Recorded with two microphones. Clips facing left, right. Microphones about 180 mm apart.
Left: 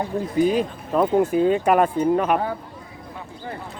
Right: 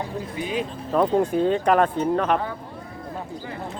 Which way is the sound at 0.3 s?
40° left (ahead or behind).